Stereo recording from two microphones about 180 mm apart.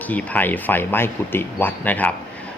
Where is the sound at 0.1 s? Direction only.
10° left (ahead or behind).